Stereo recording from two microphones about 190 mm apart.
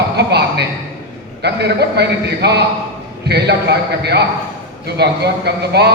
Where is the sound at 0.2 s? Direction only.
60° right (ahead or behind).